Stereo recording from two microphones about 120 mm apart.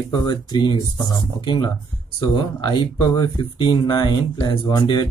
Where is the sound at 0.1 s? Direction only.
35° left (ahead or behind).